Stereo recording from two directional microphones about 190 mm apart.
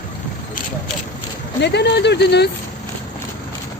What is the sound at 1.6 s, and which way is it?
Speech, 65° left (ahead or behind).